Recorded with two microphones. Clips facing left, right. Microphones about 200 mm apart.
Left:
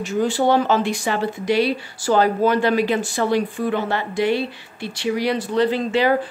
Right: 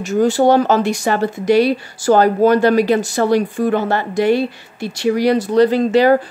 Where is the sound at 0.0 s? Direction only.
45° right (ahead or behind).